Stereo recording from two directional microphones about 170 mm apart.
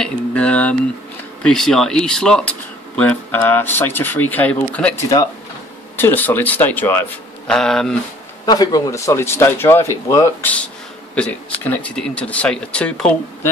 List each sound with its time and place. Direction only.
0.0 s speech: 5° left (ahead or behind)
5.9 s speech: 10° left (ahead or behind)
8.5 s speech: 20° left (ahead or behind); by 13.5 s 5° left (ahead or behind)